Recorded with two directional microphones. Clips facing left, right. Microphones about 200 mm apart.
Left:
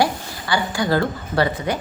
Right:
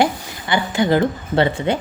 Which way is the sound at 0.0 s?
20° right (ahead or behind).